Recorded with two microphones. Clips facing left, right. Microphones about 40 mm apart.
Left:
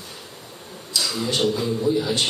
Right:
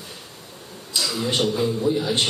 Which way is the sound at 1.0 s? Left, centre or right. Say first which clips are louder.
Right 1 dB; centre.